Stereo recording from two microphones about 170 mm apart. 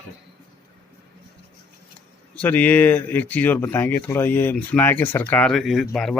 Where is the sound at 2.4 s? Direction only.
10° left (ahead or behind).